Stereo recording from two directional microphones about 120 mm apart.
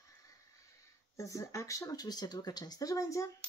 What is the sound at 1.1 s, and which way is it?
Speech, 25° left (ahead or behind).